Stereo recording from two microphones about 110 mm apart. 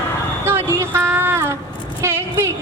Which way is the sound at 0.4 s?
25° right (ahead or behind).